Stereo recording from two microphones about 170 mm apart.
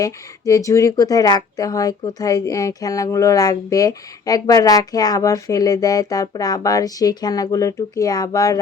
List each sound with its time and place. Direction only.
0.0 s speech: 20° left (ahead or behind)